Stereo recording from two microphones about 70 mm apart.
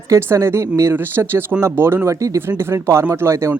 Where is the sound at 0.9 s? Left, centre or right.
Right.